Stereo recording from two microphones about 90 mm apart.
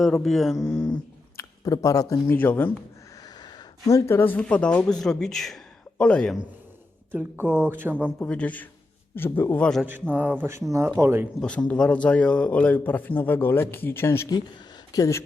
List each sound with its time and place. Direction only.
0.0 s speech: 5° left (ahead or behind)
1.4 s speech: 40° left (ahead or behind)
2.3 s a man's voice: 20° left (ahead or behind)
3.2 s a sound: 45° left (ahead or behind)
4.1 s a man's voice: 25° left (ahead or behind)
4.4 s speech: 10° left (ahead or behind)
7.1 s a man's voice: 20° right (ahead or behind)
8.2 s a man's voice: 15° left (ahead or behind)
9.6 s speech: 10° left (ahead or behind)
9.8 s a man's voice: 20° right (ahead or behind)
10.7 s a man's voice: 30° right (ahead or behind)
11.7 s a man's voice: 15° left (ahead or behind)
14.9 s speech: 40° left (ahead or behind)